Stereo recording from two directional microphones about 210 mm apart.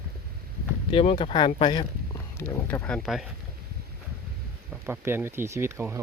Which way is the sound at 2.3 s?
10° left (ahead or behind).